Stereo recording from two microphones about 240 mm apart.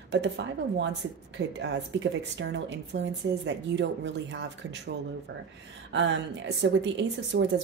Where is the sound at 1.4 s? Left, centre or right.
Right.